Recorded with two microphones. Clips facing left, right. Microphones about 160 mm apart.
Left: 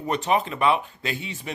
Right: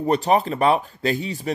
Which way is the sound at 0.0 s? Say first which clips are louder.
Right 5 dB; 35° right (ahead or behind).